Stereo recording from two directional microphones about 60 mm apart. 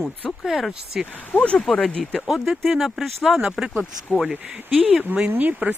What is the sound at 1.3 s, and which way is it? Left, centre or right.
Speech, left.